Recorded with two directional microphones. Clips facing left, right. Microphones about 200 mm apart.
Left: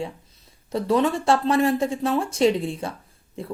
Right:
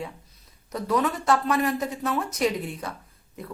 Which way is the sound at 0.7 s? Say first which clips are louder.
Left 4 dB; 25° left (ahead or behind).